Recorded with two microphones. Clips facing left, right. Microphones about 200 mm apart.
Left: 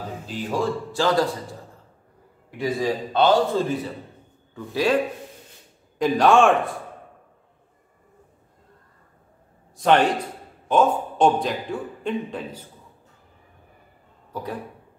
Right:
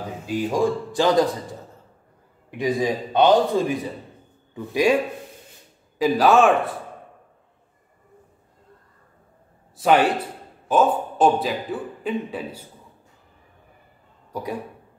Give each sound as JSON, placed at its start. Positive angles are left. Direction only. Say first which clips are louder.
{"t": 0.3, "sound": "a man's voice", "louder": "right 4 dB", "side_deg": -15}
{"t": 2.5, "sound": "a man's voice", "louder": "right 2 dB", "side_deg": -15}
{"t": 5.9, "sound": "a man's voice", "louder": "even", "side_deg": -5}
{"t": 9.8, "sound": "a man's voice", "louder": "right 1 dB", "side_deg": -5}
{"t": 14.3, "sound": "speech", "louder": "right 2 dB", "side_deg": -10}